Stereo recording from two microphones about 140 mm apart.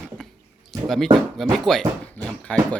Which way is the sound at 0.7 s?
Centre (ahead or behind).